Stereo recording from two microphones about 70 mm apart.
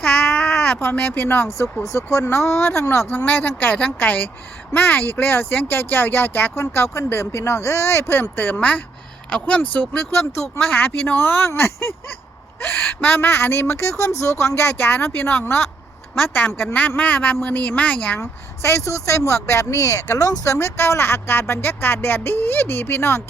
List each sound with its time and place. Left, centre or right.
0.3 s baby cry: centre
0.8 s a woman's voice: left
3.2 s a woman's voice: left
18.2 s speech: left
20.1 s speech: left
20.4 s speech: left